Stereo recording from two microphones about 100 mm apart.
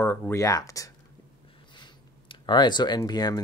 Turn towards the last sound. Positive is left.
turn(degrees=45)  # may be behind; listen again after turning